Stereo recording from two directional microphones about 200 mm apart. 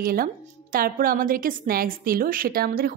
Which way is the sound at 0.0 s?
45° right (ahead or behind).